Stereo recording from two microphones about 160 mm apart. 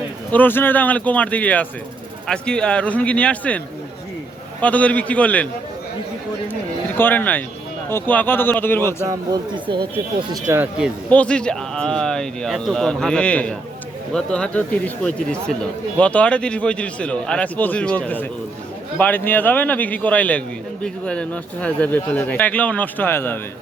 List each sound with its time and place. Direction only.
0.3 s speech: 10° left (ahead or behind)
4.6 s speech: 10° left (ahead or behind)
6.5 s speech: 10° left (ahead or behind)
9.0 s speech: 25° right (ahead or behind)
10.5 s speech: 10° right (ahead or behind)
11.1 s speech: 5° left (ahead or behind)